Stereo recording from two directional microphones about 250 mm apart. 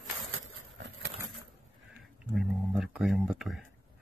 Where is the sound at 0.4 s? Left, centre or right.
Right.